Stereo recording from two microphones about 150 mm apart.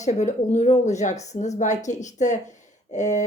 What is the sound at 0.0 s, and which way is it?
A woman's voice, 50° left (ahead or behind).